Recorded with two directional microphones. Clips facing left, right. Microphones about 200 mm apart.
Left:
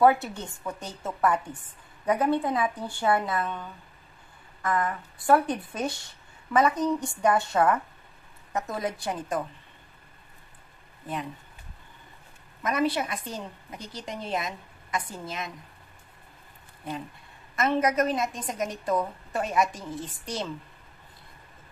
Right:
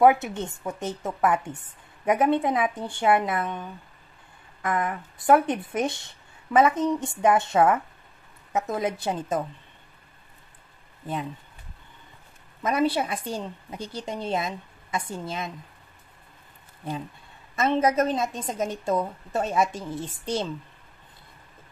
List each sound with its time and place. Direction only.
0.0 s a woman's voice: 20° right (ahead or behind)
4.6 s a woman's voice: 20° right (ahead or behind)
12.6 s a woman's voice: 30° right (ahead or behind)
17.6 s a woman's voice: 25° right (ahead or behind)